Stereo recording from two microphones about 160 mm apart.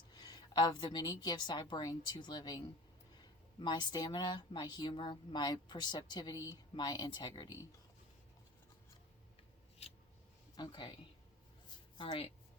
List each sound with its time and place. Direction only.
0.1 s a woman's voice: 25° left (ahead or behind)
3.6 s speech: 25° left (ahead or behind)
10.6 s speech: 25° left (ahead or behind)